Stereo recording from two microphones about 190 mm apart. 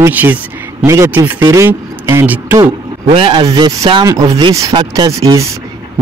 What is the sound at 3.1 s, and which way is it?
Speech, 25° right (ahead or behind).